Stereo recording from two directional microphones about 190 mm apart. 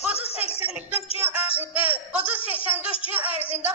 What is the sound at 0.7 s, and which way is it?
Music, 10° right (ahead or behind).